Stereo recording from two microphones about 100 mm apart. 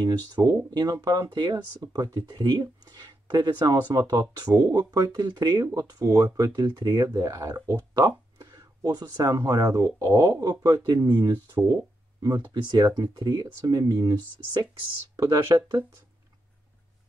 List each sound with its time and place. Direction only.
0.0 s speech: 40° right (ahead or behind)
10.5 s speech: 45° right (ahead or behind)
11.5 s speech: 35° right (ahead or behind)
12.6 s speech: 45° right (ahead or behind)